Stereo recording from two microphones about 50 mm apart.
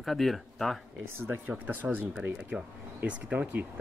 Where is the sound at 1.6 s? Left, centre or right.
Right.